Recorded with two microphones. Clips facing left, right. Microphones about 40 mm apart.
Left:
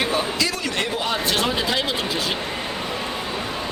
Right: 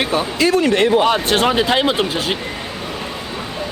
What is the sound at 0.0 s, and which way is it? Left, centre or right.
Speech, right.